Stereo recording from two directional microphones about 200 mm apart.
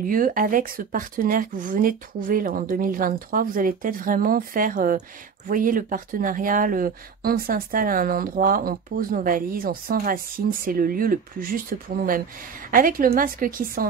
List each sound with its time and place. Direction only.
0.0 s speech: 45° right (ahead or behind)